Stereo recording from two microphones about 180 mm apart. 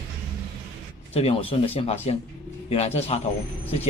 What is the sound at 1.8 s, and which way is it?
Speech, 35° left (ahead or behind).